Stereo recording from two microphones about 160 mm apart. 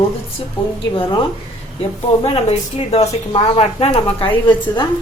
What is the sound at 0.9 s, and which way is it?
Speech, 30° left (ahead or behind).